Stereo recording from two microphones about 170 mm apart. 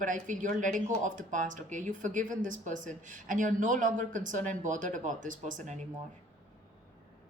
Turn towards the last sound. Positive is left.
turn(degrees=-45)  # may be behind; listen again after turning